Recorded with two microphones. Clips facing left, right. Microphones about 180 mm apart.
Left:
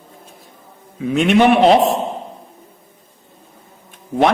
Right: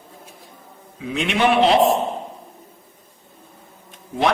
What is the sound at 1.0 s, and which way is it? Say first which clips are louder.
Speech: left 7 dB; 50° left (ahead or behind).